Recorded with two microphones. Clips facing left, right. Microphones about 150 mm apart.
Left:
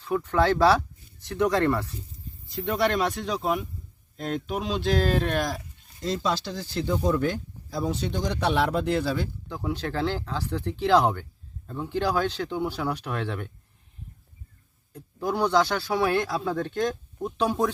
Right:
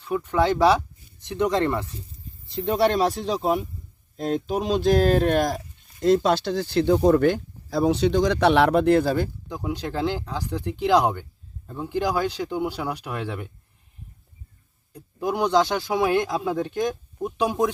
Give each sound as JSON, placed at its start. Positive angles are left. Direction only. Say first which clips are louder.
{"t": 0.0, "sound": "speech", "louder": "right 1 dB", "side_deg": -15}
{"t": 2.5, "sound": "speech", "louder": "right 4 dB", "side_deg": -30}
{"t": 9.5, "sound": "speech", "louder": "right 1 dB", "side_deg": -15}
{"t": 14.9, "sound": "speech", "louder": "right 2 dB", "side_deg": -15}